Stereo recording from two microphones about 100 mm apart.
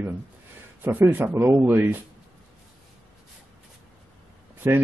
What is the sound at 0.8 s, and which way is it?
Speech, 20° right (ahead or behind).